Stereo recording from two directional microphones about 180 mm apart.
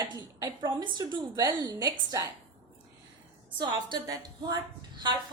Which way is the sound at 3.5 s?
25° right (ahead or behind).